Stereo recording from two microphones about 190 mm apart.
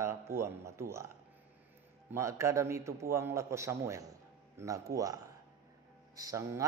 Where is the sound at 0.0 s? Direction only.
15° right (ahead or behind).